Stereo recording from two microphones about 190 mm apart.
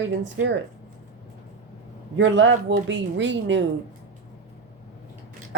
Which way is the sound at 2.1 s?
80° right.